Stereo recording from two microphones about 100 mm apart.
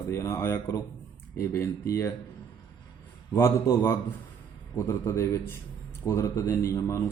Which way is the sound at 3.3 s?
35° left (ahead or behind).